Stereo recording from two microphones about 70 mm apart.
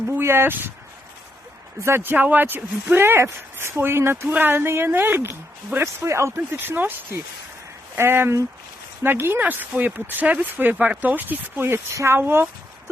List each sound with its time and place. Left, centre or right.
0.2 s speech: right
2.0 s speech: right
6.3 s speech: right
7.9 s speech: right